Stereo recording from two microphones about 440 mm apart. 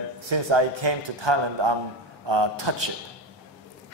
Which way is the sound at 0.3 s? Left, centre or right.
Right.